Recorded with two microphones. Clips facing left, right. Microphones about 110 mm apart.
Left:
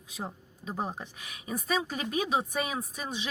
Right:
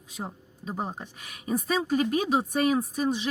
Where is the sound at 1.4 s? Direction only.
40° right (ahead or behind).